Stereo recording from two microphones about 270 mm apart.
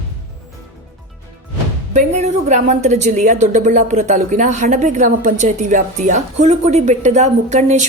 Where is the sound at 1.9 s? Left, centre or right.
Right.